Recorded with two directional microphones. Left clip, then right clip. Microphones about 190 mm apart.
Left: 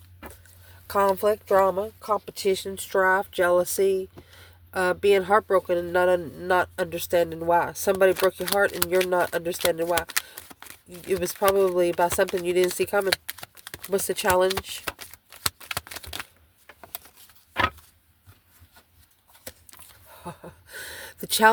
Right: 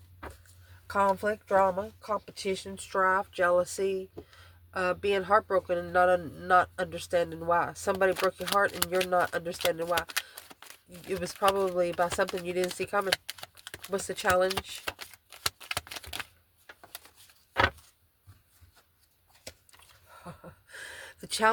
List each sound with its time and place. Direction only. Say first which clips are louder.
0.9 s speech: left 5 dB; 50° left (ahead or behind); by 12.5 s 35° left (ahead or behind)
12.5 s speech: left 8 dB; 45° left (ahead or behind)
13.1 s typing: left 4 dB; 30° left (ahead or behind)
13.9 s speech: left 5 dB; 45° left (ahead or behind)
14.8 s a sound: left 3 dB; 30° left (ahead or behind)
20.2 s a sound: left 8 dB; 45° left (ahead or behind)